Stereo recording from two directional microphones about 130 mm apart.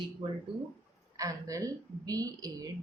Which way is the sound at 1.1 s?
25° right (ahead or behind).